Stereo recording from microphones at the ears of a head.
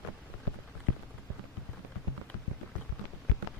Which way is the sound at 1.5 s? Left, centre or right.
Left.